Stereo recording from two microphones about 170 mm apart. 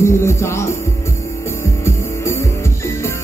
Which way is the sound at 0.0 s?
15° left (ahead or behind).